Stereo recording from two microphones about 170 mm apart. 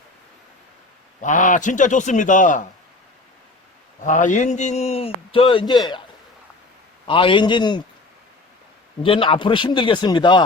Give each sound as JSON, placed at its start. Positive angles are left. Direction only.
{"t": 1.2, "sound": "speech", "side_deg": 50}
{"t": 4.0, "sound": "a man's voice", "side_deg": 50}
{"t": 7.0, "sound": "speech", "side_deg": 30}
{"t": 9.0, "sound": "speech", "side_deg": 30}